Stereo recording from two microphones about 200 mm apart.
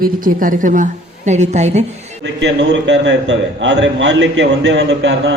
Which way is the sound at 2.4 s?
60° right (ahead or behind).